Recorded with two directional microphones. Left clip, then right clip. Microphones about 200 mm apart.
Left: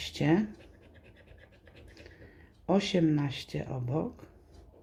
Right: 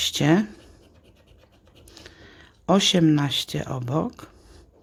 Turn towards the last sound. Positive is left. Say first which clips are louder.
# right 7 dB
turn(degrees=-35)  # may be behind; listen again after turning